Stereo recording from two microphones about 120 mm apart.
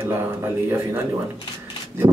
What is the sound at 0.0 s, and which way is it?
Speech, 20° right (ahead or behind).